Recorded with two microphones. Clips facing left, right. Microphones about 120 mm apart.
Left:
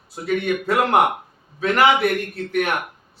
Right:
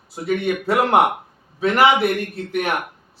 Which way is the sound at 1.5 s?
20° right (ahead or behind).